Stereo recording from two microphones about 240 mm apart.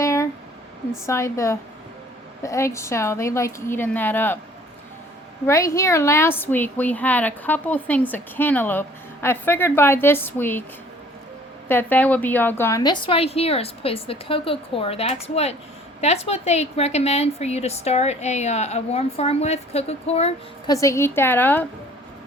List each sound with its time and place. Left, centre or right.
0.0 s a sound: centre
1.0 s a woman's voice: centre
5.5 s a woman's voice: centre
11.7 s a woman's voice: centre; by 20.7 s left
20.8 s a woman's voice: centre